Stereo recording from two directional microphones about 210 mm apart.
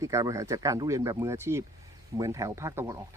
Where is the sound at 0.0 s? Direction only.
15° right (ahead or behind).